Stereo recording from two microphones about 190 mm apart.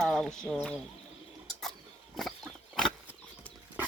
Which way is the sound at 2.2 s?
Centre (ahead or behind).